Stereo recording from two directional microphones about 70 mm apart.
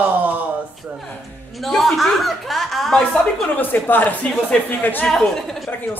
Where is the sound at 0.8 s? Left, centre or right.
Centre.